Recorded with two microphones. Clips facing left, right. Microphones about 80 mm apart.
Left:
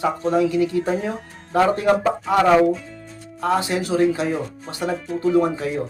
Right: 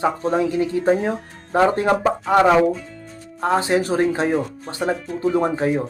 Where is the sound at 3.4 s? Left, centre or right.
Right.